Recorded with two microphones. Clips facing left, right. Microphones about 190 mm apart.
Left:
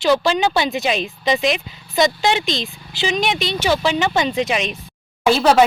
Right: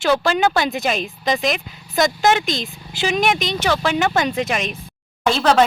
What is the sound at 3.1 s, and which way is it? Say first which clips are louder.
Speech: right 2 dB; centre (ahead or behind).